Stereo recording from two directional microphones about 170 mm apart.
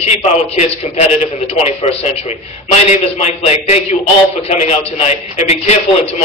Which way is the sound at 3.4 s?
40° left (ahead or behind).